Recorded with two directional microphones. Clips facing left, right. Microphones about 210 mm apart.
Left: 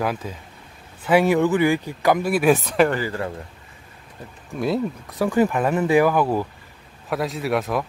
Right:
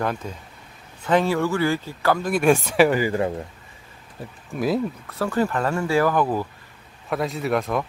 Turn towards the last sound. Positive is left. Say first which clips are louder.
# even
turn(degrees=0)  # may be behind; listen again after turning